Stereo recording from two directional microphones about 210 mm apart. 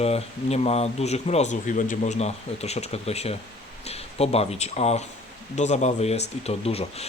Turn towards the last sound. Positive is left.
turn(degrees=30)  # may be behind; listen again after turning